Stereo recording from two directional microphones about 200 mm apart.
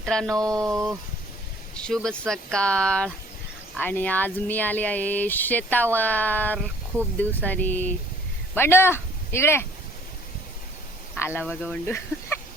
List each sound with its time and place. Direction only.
0.0 s speech: 5° left (ahead or behind)
0.6 s a sound: 15° right (ahead or behind)
1.7 s speech: 5° left (ahead or behind)
11.1 s speech: 10° left (ahead or behind)